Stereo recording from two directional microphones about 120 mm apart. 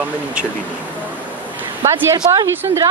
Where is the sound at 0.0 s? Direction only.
10° right (ahead or behind).